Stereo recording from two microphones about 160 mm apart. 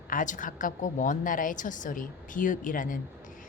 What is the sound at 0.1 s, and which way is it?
A woman's voice, 55° left (ahead or behind).